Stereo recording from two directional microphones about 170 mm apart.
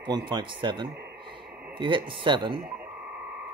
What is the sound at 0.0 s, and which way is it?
Speech, 30° right (ahead or behind).